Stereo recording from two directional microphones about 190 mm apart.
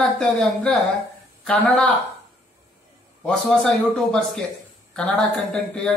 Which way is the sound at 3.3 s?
Centre (ahead or behind).